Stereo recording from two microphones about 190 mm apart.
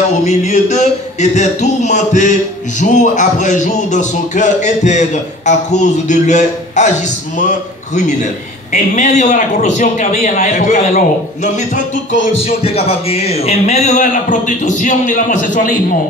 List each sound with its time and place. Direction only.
0.2 s a man's voice: 40° left (ahead or behind)